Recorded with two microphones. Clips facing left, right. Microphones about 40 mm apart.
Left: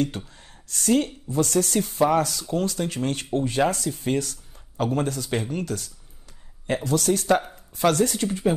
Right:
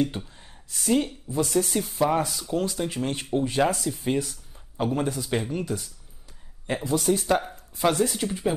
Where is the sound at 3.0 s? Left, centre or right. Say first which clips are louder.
Left 2 dB; left.